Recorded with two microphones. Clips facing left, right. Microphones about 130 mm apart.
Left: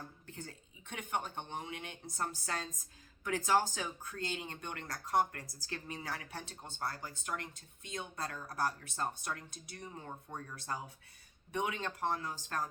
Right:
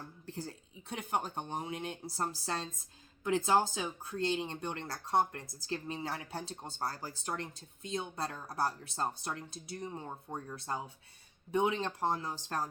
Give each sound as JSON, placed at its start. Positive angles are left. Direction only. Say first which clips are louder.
{"t": 0.3, "sound": "speech", "louder": "right 6 dB", "side_deg": -35}